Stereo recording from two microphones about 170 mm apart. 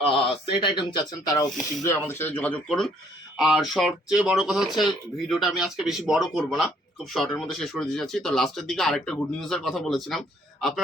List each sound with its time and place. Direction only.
0.6 s speech: 30° left (ahead or behind)
1.8 s speech: 15° left (ahead or behind)